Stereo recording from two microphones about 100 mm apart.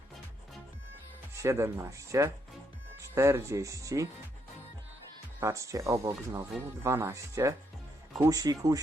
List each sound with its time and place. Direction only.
1.3 s speech: 30° right (ahead or behind)
5.4 s speech: 30° right (ahead or behind)